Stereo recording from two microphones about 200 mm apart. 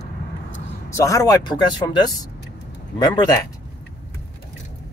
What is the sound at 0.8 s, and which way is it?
Speech, 15° left (ahead or behind).